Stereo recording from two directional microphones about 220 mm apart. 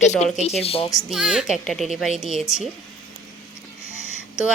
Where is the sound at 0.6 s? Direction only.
25° left (ahead or behind).